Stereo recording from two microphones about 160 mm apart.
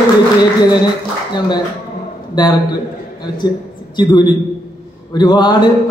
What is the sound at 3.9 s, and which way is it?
A man's voice, 25° left (ahead or behind).